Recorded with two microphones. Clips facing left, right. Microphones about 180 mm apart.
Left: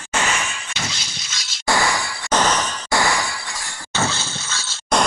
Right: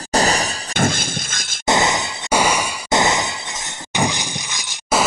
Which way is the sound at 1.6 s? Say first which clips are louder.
Right 2 dB; 20° right (ahead or behind).